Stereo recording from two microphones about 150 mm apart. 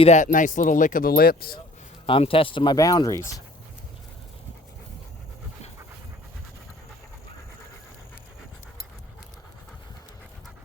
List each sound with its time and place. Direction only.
0.0 s speech: 55° left (ahead or behind); by 1.5 s 85° left
2.0 s speech: 35° left (ahead or behind)
2.7 s speech: 25° left (ahead or behind)